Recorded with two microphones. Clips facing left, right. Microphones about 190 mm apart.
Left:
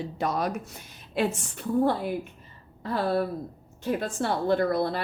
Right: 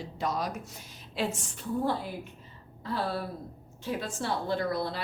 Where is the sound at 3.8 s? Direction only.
55° left (ahead or behind).